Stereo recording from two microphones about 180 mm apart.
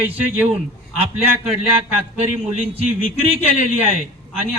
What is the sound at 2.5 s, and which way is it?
A man's voice, 35° right (ahead or behind).